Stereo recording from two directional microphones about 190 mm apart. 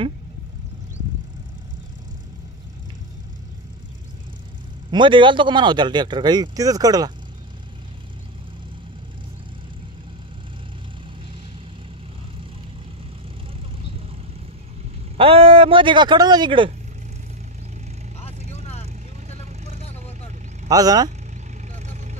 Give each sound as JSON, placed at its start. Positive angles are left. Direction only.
{"t": 4.9, "sound": "speech", "side_deg": -25}
{"t": 15.1, "sound": "speech", "side_deg": -30}
{"t": 19.3, "sound": "vehicle", "side_deg": -35}
{"t": 20.6, "sound": "speech", "side_deg": -20}
{"t": 21.7, "sound": "vehicle", "side_deg": -40}